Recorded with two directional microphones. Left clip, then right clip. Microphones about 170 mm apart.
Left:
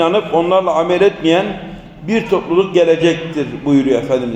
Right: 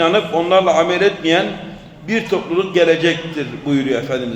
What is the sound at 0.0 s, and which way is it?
A man's voice, 15° left (ahead or behind).